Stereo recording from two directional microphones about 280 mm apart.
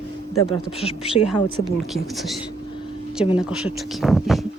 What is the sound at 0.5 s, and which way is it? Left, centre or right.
Speech, left.